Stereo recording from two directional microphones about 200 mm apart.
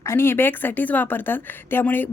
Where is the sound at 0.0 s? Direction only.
10° left (ahead or behind).